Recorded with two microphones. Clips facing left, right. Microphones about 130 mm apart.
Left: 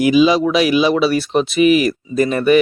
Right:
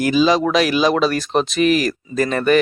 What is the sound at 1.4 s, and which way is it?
Speech, 5° left (ahead or behind).